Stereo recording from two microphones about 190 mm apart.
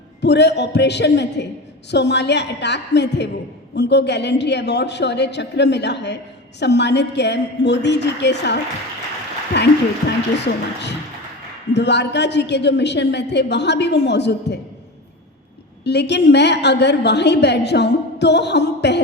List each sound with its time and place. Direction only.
0.2 s a woman's voice: 65° left (ahead or behind)
9.5 s a woman's voice: 65° left (ahead or behind)
15.8 s a woman's voice: 65° left (ahead or behind)